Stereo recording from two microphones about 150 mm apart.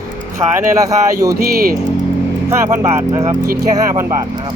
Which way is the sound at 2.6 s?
20° right (ahead or behind).